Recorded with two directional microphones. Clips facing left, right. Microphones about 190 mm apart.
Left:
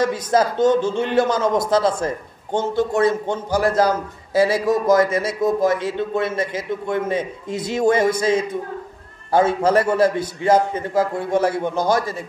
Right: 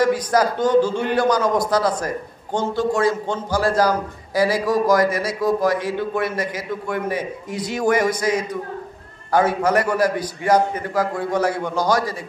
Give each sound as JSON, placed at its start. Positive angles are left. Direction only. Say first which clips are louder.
{"t": 0.0, "sound": "a man's voice", "louder": "right 1 dB", "side_deg": 25}